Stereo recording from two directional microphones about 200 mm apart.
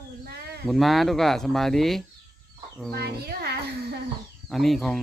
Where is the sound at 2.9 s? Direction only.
55° right (ahead or behind).